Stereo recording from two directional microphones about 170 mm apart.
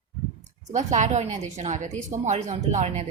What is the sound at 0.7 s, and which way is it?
A woman's voice, 45° right (ahead or behind).